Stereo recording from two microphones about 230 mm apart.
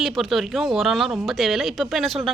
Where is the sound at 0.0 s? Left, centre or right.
Centre.